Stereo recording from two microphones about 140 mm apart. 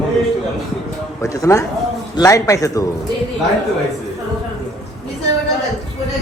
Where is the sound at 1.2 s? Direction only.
25° left (ahead or behind).